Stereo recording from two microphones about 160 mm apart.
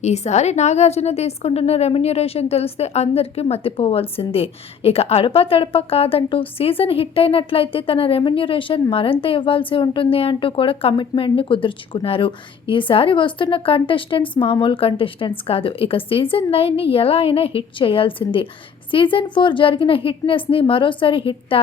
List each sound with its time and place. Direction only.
0.0 s a woman's voice: 45° left (ahead or behind)